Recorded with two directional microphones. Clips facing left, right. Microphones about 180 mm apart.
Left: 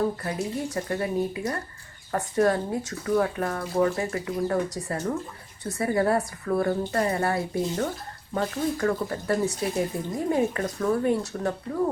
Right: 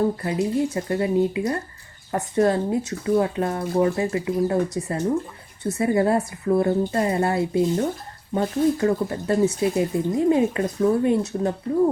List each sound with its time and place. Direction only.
0.0 s speech: 20° right (ahead or behind)